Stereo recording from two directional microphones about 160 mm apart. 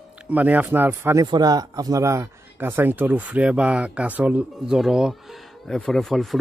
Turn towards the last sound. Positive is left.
turn(degrees=0)  # may be behind; listen again after turning